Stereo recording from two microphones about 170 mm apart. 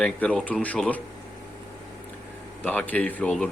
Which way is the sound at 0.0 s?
5° left (ahead or behind).